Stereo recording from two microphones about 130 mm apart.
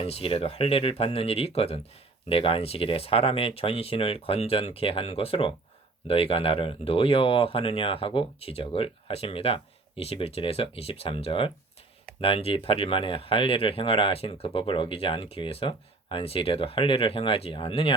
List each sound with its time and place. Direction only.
0.0 s speech: 50° left (ahead or behind)